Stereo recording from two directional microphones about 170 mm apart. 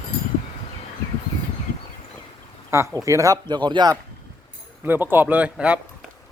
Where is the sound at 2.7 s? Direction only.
15° right (ahead or behind).